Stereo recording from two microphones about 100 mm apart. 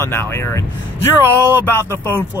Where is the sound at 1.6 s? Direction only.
20° left (ahead or behind).